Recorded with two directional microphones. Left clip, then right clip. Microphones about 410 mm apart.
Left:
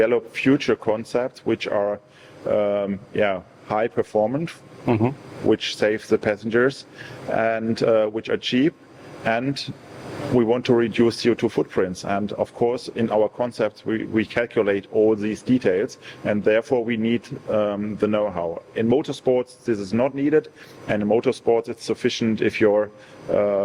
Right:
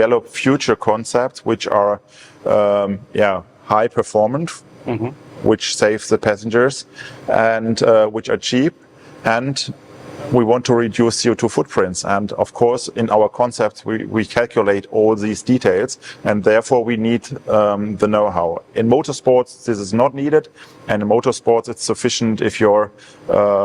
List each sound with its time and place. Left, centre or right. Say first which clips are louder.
0.0 s speech: right 5 dB; right